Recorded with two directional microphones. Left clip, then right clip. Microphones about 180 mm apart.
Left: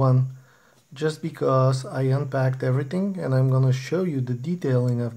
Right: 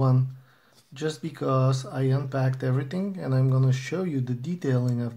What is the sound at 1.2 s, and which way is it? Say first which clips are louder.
Speech: left 5 dB; 25° left (ahead or behind).